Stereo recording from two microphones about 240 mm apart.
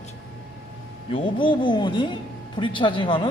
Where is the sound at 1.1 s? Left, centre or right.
Left.